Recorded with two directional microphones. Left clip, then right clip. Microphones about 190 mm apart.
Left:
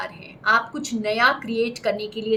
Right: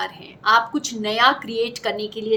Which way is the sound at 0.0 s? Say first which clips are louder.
Right 2 dB; 45° right (ahead or behind).